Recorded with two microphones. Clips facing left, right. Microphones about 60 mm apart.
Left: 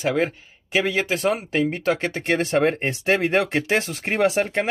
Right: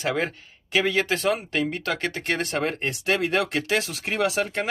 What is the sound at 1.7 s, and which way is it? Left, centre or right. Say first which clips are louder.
Speech: left 4 dB; left.